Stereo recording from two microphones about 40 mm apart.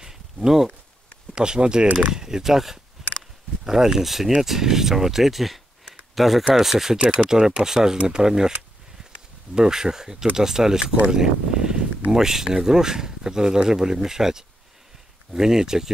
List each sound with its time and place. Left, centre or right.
0.0 s a sound: centre
1.3 s speech: right
9.6 s speech: centre